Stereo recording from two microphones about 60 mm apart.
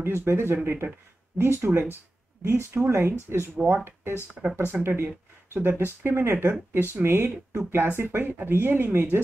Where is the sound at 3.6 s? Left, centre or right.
Centre.